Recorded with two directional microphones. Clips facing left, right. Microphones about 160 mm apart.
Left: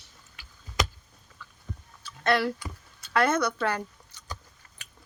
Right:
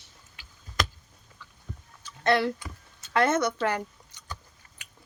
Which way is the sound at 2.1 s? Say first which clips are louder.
Right 1 dB; 20° right (ahead or behind).